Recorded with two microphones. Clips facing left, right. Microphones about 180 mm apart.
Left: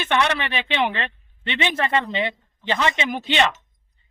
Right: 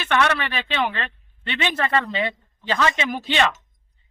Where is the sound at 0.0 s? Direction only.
15° left (ahead or behind).